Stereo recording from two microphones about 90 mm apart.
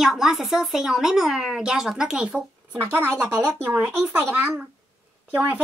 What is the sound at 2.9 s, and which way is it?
A woman's voice, 25° right (ahead or behind).